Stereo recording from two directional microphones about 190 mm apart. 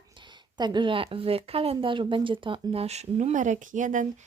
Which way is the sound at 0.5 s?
25° right (ahead or behind).